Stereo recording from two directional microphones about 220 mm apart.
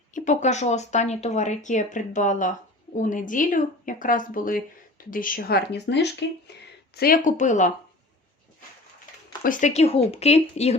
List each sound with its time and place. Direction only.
0.1 s a woman's voice: 35° left (ahead or behind)
9.4 s speech: 35° left (ahead or behind)